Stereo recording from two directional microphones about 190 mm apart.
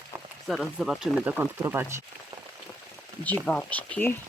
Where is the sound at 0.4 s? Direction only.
Centre (ahead or behind).